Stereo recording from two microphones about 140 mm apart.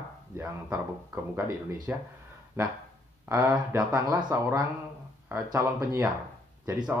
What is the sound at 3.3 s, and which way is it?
Speech, 25° right (ahead or behind).